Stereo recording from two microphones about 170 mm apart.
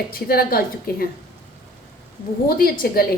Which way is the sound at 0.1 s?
60° left (ahead or behind).